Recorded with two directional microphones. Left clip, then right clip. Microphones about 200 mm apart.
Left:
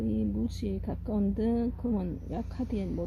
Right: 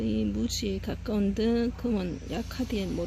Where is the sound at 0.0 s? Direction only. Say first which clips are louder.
Right 2 dB; 5° left (ahead or behind).